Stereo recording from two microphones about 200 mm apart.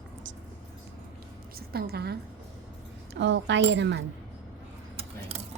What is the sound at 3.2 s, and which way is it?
Speech, 60° right (ahead or behind).